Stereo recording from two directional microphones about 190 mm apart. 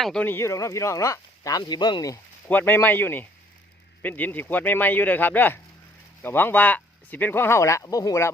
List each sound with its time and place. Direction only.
0.0 s speech: 5° left (ahead or behind); by 2.1 s 20° left (ahead or behind)
2.5 s speech: 10° left (ahead or behind)